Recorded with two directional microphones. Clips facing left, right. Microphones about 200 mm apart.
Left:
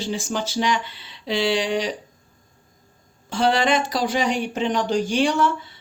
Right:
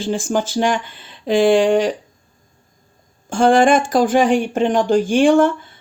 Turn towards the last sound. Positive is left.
turn(degrees=-50)  # may be behind; listen again after turning